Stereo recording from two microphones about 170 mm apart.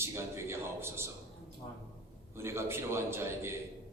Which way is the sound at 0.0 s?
15° right (ahead or behind).